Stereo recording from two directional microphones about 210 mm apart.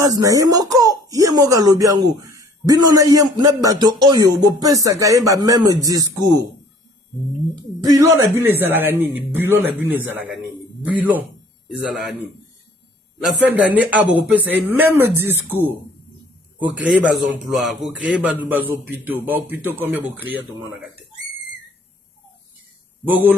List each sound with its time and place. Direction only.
0.0 s speech: 15° right (ahead or behind)
7.5 s speech: 20° right (ahead or behind)
11.0 s a man's voice: 10° right (ahead or behind)
13.4 s speech: 5° right (ahead or behind)
16.9 s a man's voice: 5° right (ahead or behind)
23.0 s speech: 10° right (ahead or behind)